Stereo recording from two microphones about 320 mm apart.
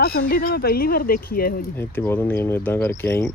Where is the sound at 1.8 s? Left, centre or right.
Centre.